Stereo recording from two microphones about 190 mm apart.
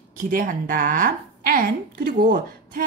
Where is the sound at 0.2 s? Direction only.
45° right (ahead or behind).